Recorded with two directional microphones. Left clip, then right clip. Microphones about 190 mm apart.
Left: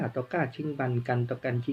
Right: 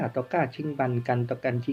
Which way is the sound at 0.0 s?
5° left (ahead or behind).